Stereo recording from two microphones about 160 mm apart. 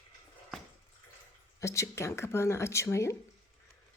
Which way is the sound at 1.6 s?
20° left (ahead or behind).